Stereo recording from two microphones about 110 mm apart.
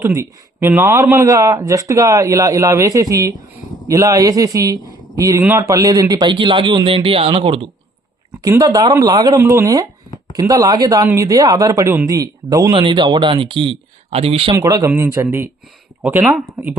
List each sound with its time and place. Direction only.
0.0 s a man's voice: 25° right (ahead or behind); by 7.7 s 55° right (ahead or behind)
8.4 s a man's voice: 35° right (ahead or behind)
9.4 s a man's voice: 25° right (ahead or behind)
12.7 s speech: 45° right (ahead or behind)
14.5 s a man's voice: 30° right (ahead or behind)
16.6 s speech: 10° right (ahead or behind)